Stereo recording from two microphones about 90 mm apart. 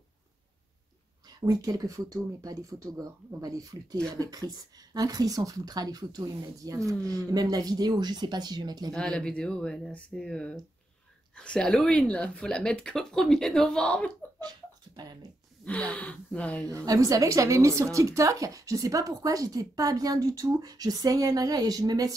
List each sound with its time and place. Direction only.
1.2 s a woman's voice: 45° right (ahead or behind)
8.9 s speech: 10° left (ahead or behind)
15.6 s speech: 15° left (ahead or behind)
16.6 s a woman's voice: 40° right (ahead or behind)